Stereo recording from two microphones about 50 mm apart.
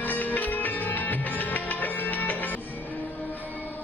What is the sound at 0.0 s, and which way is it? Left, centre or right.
Music, left.